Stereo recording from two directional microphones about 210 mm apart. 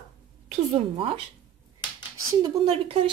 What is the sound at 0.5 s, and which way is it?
Speech, 25° right (ahead or behind).